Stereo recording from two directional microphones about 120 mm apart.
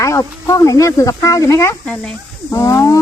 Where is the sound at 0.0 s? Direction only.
25° left (ahead or behind).